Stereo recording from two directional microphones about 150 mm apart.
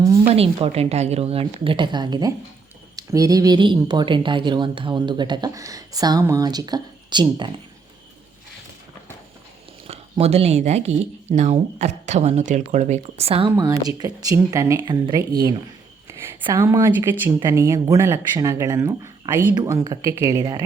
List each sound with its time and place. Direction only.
0.3 s a woman's voice: 40° right (ahead or behind)
9.8 s speech: 45° right (ahead or behind)
13.6 s speech: 25° right (ahead or behind)